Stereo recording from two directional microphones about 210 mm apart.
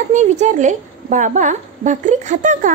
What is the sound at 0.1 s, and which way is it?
A woman's voice, 35° right (ahead or behind).